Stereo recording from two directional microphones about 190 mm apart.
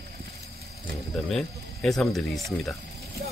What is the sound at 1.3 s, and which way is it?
Speech, centre (ahead or behind).